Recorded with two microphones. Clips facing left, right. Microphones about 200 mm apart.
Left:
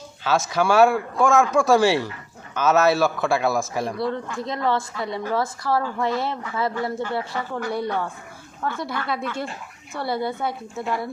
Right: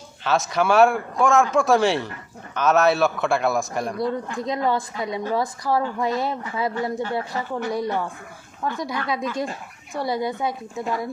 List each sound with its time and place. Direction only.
0.3 s a man's voice: centre (ahead or behind)
4.0 s a woman's voice: 20° right (ahead or behind)